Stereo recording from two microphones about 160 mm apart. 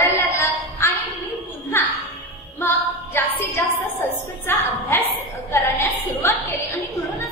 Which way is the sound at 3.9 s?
15° left (ahead or behind).